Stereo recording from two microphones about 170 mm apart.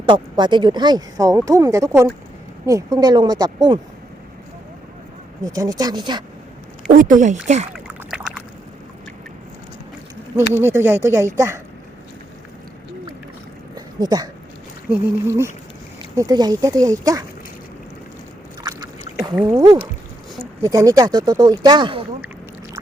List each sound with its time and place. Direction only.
0.0 s speech: 25° right (ahead or behind)
5.4 s speech: 20° right (ahead or behind)
6.8 s speech: 50° right (ahead or behind)
7.7 s a sound: 5° right (ahead or behind)
10.5 s speech: 15° right (ahead or behind)
13.7 s a sound: 25° right (ahead or behind)
14.8 s speech: 15° right (ahead or behind)
19.4 s speech: 20° right (ahead or behind)